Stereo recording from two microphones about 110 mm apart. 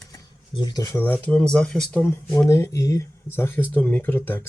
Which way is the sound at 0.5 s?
40° left (ahead or behind).